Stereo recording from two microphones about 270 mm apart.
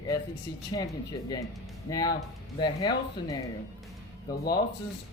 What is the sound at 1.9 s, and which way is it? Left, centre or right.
Speech, centre.